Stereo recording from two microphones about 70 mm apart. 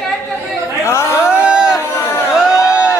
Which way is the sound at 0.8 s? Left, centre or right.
Left.